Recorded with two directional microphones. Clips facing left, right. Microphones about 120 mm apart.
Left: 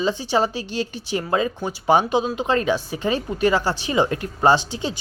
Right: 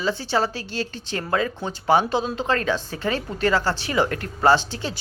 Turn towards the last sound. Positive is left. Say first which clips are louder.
# left 1 dB
turn(degrees=15)  # may be behind; listen again after turning